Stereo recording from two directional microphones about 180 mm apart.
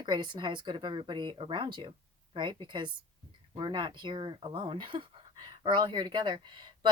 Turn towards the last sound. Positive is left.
turn(degrees=-25)  # may be behind; listen again after turning